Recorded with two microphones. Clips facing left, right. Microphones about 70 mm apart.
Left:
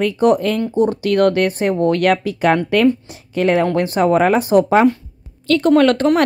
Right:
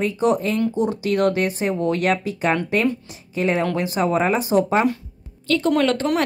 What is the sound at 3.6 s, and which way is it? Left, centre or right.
Speech, left.